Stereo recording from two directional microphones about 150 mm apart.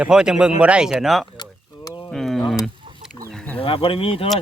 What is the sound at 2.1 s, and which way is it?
Speech, centre (ahead or behind).